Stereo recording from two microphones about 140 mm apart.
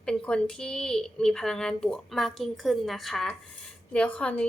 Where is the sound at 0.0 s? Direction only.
5° left (ahead or behind).